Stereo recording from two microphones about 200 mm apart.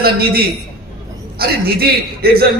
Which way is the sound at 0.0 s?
50° right (ahead or behind).